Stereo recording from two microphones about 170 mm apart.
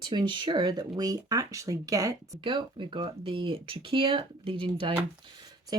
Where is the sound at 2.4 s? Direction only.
30° right (ahead or behind).